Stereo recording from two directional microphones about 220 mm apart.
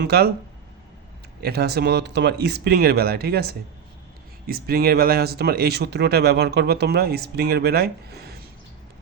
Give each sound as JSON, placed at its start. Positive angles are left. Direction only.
{"t": 0.0, "sound": "speech", "side_deg": -45}
{"t": 1.4, "sound": "speech", "side_deg": -45}